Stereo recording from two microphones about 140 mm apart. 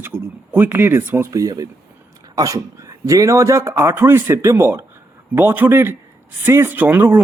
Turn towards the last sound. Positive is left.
turn(degrees=-15)  # may be behind; listen again after turning